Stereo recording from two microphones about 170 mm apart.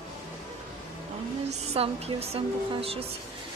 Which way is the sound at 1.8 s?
35° right (ahead or behind).